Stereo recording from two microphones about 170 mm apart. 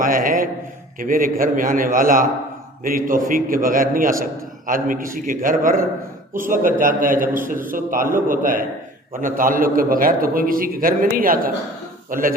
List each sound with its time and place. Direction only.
0.0 s a man's voice: 55° right (ahead or behind)